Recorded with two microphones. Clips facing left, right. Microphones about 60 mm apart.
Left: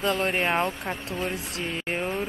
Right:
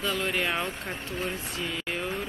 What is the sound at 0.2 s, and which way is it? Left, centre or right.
Speech, left.